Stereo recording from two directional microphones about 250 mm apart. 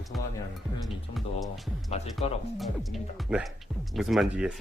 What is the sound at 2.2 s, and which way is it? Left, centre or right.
Speech, left.